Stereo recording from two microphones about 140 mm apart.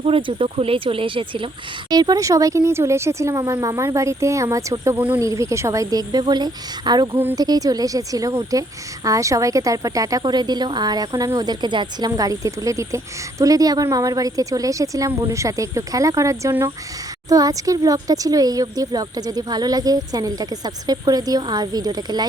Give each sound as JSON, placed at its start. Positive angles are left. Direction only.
{"t": 0.0, "sound": "speech", "side_deg": -40}
{"t": 4.9, "sound": "speech", "side_deg": -10}
{"t": 5.2, "sound": "speech", "side_deg": -20}